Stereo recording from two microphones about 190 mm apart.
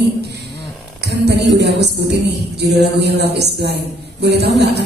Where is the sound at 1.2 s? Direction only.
60° right (ahead or behind).